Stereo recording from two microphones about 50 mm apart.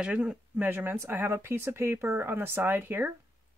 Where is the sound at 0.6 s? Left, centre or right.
Right.